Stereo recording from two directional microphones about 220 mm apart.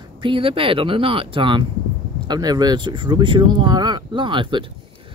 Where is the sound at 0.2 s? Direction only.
25° right (ahead or behind).